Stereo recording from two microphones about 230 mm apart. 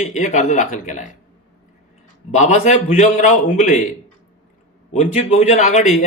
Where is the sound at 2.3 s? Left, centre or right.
Left.